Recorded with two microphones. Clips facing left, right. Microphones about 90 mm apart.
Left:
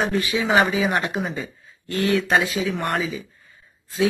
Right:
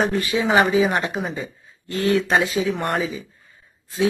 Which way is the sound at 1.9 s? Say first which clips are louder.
Right 1 dB; 25° right (ahead or behind).